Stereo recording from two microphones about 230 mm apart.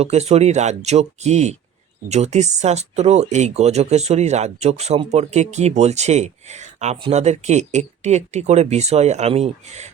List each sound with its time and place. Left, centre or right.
0.0 s speech: right